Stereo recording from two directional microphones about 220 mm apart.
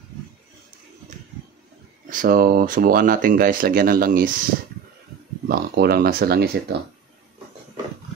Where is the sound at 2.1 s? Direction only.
40° right (ahead or behind).